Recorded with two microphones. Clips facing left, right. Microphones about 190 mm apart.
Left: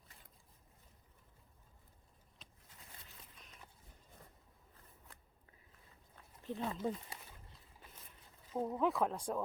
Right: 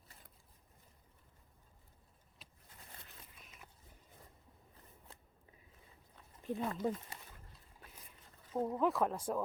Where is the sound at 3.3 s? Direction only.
5° right (ahead or behind).